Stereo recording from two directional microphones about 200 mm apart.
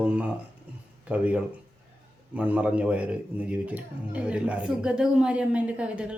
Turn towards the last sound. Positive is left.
turn(degrees=-5)  # may be behind; listen again after turning